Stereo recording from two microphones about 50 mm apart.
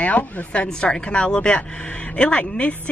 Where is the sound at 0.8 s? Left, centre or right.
Centre.